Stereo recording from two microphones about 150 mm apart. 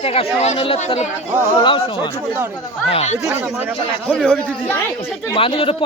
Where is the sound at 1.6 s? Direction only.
35° left (ahead or behind).